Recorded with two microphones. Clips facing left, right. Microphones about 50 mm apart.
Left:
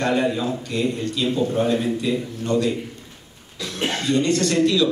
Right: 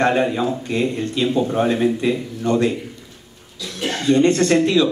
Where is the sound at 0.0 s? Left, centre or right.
Right.